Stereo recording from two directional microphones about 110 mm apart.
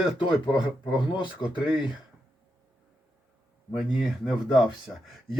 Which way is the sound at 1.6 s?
45° left (ahead or behind).